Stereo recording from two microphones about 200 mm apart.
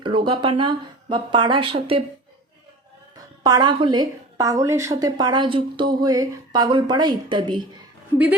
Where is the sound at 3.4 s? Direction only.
20° right (ahead or behind).